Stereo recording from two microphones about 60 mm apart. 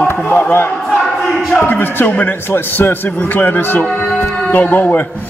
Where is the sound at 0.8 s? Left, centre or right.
Centre.